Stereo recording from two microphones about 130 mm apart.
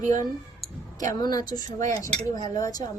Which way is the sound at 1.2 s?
30° left (ahead or behind).